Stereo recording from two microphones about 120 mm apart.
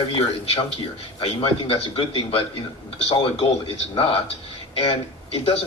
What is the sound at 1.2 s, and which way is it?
Speech, 50° left (ahead or behind).